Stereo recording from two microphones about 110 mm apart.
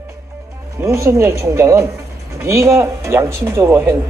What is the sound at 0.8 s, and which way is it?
A man's voice, 25° right (ahead or behind).